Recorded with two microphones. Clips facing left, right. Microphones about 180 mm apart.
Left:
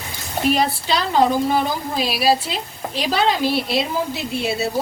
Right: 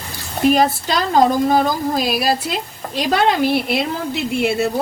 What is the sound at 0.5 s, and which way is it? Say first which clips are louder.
A woman's voice: right 3 dB; 45° right (ahead or behind).